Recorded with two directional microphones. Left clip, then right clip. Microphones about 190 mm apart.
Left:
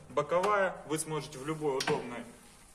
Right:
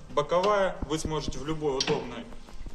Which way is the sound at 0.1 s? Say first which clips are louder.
Right 4 dB; 40° left (ahead or behind).